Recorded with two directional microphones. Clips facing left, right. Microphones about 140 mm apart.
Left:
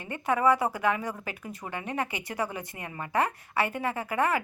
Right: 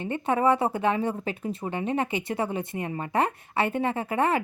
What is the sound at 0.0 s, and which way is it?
A woman's voice, 25° right (ahead or behind).